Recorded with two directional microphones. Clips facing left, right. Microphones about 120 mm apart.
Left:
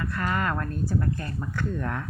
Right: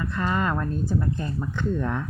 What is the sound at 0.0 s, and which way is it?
A woman's voice, 20° right (ahead or behind).